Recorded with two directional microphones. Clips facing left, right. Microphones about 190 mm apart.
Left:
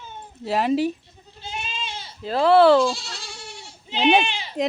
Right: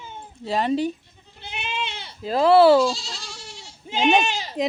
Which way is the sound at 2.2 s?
10° right (ahead or behind).